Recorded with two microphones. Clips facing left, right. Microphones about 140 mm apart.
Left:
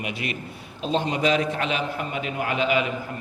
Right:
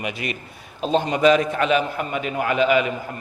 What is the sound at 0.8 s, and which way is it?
A man's voice, 50° right (ahead or behind).